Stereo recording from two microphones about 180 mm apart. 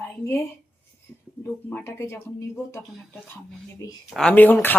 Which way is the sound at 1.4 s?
15° left (ahead or behind).